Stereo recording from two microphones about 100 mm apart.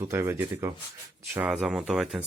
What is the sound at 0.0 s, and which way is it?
Speech, 25° right (ahead or behind).